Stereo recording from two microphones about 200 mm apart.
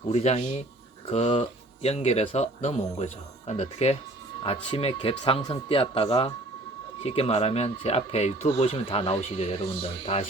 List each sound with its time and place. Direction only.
0.1 s speech: 35° left (ahead or behind)